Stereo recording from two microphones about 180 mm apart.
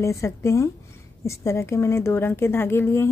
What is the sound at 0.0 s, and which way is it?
A woman's voice, 15° left (ahead or behind).